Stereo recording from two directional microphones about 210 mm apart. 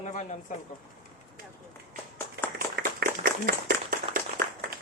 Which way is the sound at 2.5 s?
45° right (ahead or behind).